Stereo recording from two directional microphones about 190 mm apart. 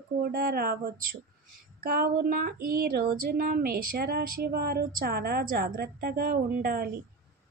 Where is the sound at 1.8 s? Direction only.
50° right (ahead or behind).